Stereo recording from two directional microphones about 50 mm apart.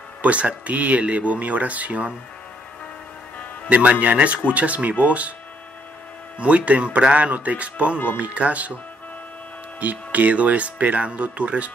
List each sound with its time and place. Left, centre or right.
0.2 s speech: right
3.6 s speech: right
6.4 s speech: right
9.8 s speech: right